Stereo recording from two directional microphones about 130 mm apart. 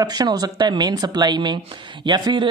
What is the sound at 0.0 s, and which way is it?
Speech, 30° right (ahead or behind).